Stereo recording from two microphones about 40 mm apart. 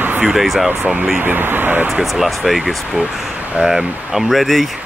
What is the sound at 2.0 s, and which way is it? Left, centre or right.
Speech, centre.